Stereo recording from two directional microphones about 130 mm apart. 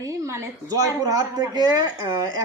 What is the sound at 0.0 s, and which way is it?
A man's voice, 25° right (ahead or behind).